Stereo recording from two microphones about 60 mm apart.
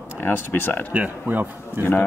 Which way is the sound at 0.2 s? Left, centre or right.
Left.